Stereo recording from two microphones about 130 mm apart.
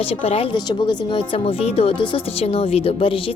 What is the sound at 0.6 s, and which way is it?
Speech, 35° left (ahead or behind).